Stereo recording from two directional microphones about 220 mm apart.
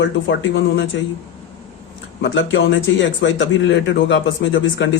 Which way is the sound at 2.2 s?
55° left (ahead or behind).